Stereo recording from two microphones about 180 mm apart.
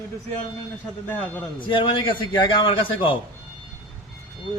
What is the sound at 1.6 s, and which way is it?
A man's voice, 25° left (ahead or behind).